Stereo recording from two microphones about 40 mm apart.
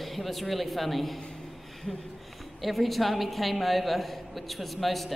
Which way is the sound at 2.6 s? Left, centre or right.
Centre.